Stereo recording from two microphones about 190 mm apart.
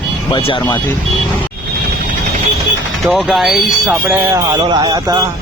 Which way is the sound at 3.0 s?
Centre (ahead or behind).